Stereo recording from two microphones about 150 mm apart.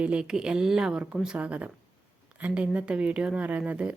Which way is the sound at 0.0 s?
5° right (ahead or behind).